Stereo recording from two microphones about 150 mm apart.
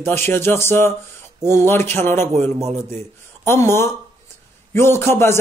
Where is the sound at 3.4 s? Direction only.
15° left (ahead or behind).